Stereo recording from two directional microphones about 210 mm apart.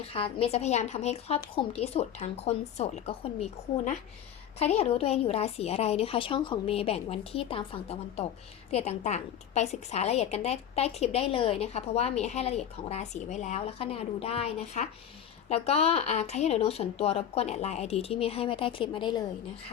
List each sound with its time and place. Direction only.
0.0 s a woman's voice: 25° left (ahead or behind)